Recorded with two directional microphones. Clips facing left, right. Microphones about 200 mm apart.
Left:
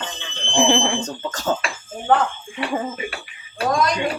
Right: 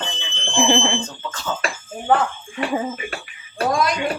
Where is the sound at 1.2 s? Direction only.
45° left (ahead or behind).